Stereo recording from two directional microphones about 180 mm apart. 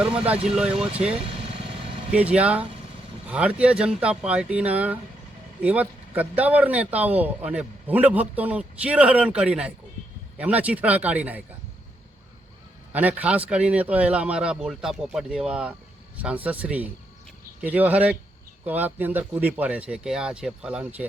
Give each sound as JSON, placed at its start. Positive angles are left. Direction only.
{"t": 0.0, "sound": "a man's voice", "side_deg": -5}
{"t": 1.2, "sound": "vehicle", "side_deg": -30}
{"t": 2.1, "sound": "speech", "side_deg": -5}
{"t": 12.9, "sound": "a man's voice", "side_deg": -10}